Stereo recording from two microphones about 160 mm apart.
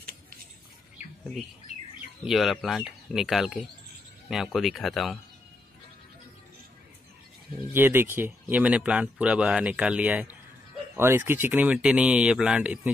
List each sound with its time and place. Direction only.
2.2 s speech: centre (ahead or behind)
7.7 s speech: 15° right (ahead or behind)